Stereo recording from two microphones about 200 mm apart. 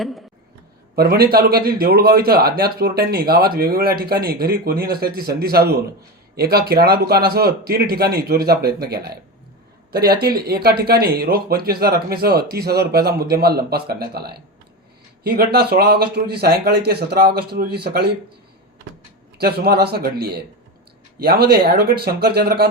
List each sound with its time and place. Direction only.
0.9 s speech: 50° right (ahead or behind)
19.4 s speech: 50° right (ahead or behind)